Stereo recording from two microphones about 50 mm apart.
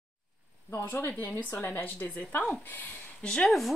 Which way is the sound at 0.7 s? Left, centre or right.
Left.